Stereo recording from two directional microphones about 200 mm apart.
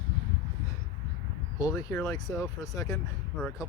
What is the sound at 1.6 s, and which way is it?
Speech, 15° left (ahead or behind).